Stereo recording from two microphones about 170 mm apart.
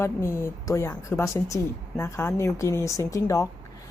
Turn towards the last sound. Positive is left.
turn(degrees=20)  # may be behind; listen again after turning